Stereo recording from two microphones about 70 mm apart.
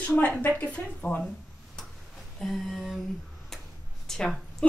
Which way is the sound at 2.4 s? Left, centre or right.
Centre.